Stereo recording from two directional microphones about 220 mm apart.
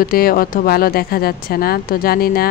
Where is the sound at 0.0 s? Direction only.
40° left (ahead or behind).